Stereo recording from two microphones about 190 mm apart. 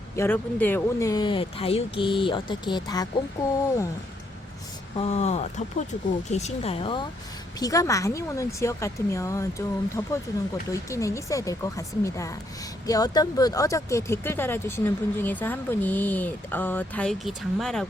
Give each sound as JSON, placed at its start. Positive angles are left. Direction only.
{"t": 0.2, "sound": "speech", "side_deg": 10}
{"t": 4.9, "sound": "speech", "side_deg": 35}
{"t": 7.6, "sound": "speech", "side_deg": 15}